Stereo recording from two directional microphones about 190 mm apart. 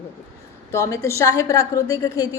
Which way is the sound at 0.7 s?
15° left (ahead or behind).